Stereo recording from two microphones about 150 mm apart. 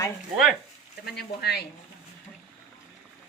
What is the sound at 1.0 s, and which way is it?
Speech, 90° left.